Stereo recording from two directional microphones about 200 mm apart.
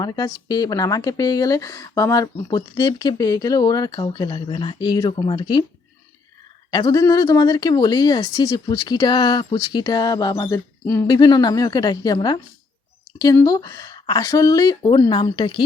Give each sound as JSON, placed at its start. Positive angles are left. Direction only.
{"t": 0.0, "sound": "speech", "side_deg": 20}
{"t": 6.7, "sound": "speech", "side_deg": 20}